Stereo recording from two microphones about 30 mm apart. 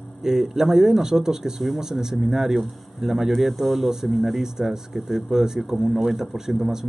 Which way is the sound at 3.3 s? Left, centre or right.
Centre.